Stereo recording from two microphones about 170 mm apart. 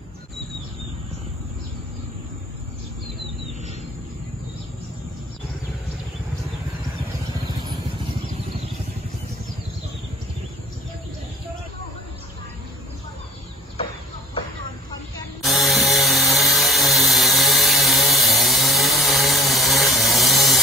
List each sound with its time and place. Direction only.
7.4 s vehicle: 30° right (ahead or behind)
15.4 s tools: centre (ahead or behind)